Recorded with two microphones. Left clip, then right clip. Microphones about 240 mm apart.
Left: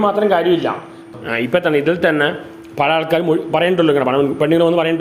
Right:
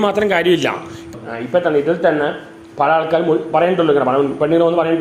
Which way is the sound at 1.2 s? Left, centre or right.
Left.